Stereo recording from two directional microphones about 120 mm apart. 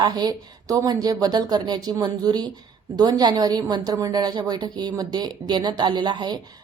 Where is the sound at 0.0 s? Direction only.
35° right (ahead or behind).